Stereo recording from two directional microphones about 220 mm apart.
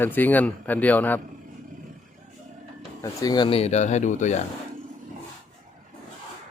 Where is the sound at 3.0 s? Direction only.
15° left (ahead or behind); by 4.4 s 35° left (ahead or behind).